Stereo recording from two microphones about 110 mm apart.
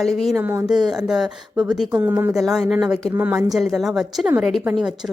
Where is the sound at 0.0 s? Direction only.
Centre (ahead or behind).